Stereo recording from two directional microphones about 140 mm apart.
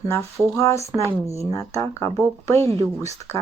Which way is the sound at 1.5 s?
25° left (ahead or behind).